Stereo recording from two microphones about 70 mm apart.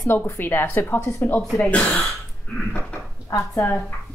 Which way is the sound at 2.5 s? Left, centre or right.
Centre.